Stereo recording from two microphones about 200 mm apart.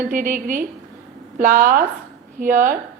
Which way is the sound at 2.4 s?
40° right (ahead or behind).